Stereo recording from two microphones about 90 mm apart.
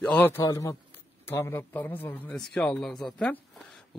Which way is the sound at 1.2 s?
25° left (ahead or behind).